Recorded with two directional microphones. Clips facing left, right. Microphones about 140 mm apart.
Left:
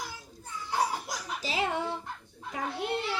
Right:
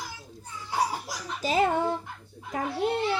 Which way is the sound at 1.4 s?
45° right (ahead or behind).